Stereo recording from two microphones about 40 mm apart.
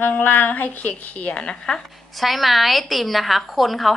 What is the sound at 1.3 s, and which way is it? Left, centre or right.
Speech, left.